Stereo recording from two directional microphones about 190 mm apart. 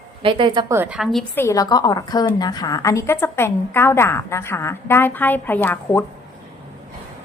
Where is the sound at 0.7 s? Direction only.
5° right (ahead or behind).